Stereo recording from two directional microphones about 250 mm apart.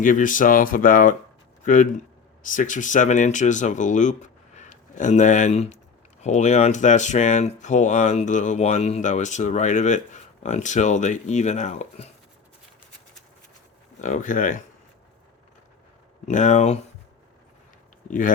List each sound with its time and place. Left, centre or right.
0.0 s a man's voice: left
14.0 s speech: left
16.2 s speech: left